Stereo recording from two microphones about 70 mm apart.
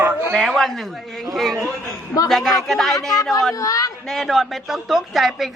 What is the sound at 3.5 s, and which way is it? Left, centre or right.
Speech, left.